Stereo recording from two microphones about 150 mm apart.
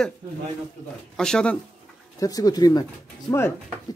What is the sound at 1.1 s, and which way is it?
Speech, 5° left (ahead or behind).